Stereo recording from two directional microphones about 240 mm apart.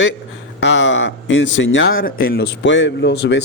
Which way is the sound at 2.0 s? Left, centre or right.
Left.